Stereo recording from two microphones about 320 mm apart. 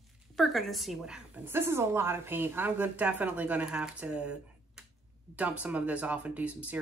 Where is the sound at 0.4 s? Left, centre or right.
Centre.